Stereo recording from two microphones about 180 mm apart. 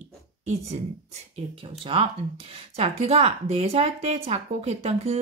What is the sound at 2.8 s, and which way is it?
Speech, 35° right (ahead or behind).